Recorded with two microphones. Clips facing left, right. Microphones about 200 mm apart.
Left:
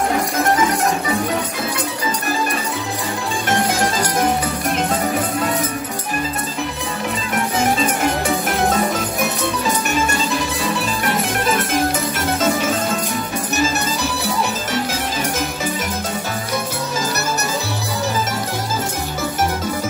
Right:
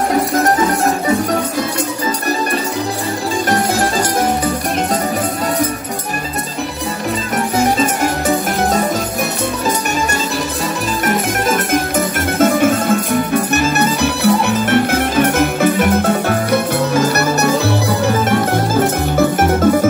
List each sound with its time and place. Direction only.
12.4 s music: 55° right (ahead or behind)